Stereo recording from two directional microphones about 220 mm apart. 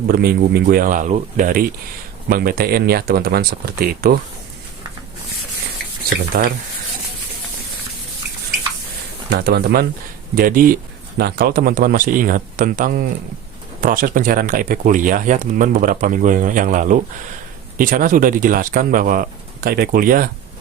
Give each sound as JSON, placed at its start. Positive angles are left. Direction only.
{"t": 0.1, "sound": "speech", "side_deg": -45}
{"t": 9.3, "sound": "speech", "side_deg": -45}